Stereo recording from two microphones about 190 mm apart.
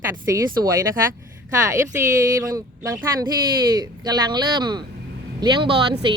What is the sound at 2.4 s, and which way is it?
Speech, 20° right (ahead or behind).